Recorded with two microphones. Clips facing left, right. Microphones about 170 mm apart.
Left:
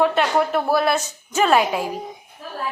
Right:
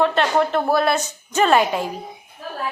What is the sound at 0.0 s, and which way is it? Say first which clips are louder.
A woman's voice: even; 10° left (ahead or behind).